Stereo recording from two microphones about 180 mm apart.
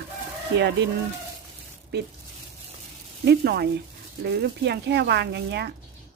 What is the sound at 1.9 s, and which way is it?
Speech, 65° right (ahead or behind).